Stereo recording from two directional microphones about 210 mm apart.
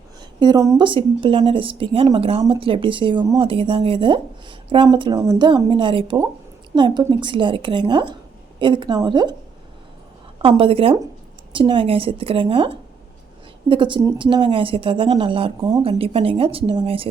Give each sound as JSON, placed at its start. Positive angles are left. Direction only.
{"t": 0.3, "sound": "speech", "side_deg": -20}
{"t": 10.4, "sound": "speech", "side_deg": -25}